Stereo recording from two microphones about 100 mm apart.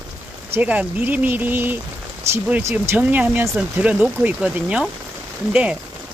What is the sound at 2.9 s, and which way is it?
Speech, 15° right (ahead or behind).